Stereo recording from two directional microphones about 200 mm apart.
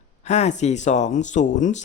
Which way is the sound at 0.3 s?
35° left (ahead or behind).